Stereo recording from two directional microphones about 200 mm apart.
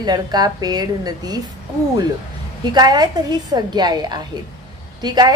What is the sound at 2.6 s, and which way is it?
A woman's voice, 20° right (ahead or behind).